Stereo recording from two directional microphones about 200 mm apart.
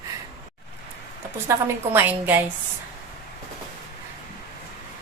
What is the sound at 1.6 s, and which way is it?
Speech, 10° right (ahead or behind).